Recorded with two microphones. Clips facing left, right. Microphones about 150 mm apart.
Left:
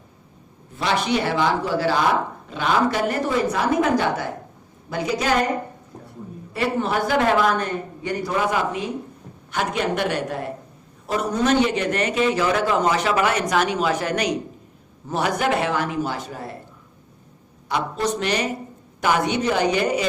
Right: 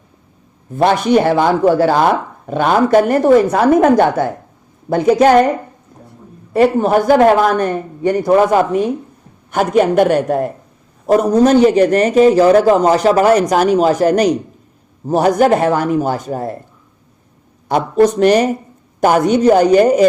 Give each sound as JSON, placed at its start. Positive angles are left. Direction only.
{"t": 0.7, "sound": "speech", "side_deg": -50}
{"t": 6.5, "sound": "a man's voice", "side_deg": -45}
{"t": 17.7, "sound": "speech", "side_deg": -45}